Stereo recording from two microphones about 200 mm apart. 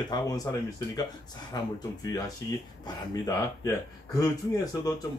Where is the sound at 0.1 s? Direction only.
20° left (ahead or behind).